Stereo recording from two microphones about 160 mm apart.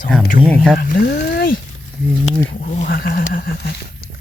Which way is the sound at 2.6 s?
60° left (ahead or behind).